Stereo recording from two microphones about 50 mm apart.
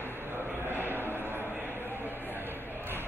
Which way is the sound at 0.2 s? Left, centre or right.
Right.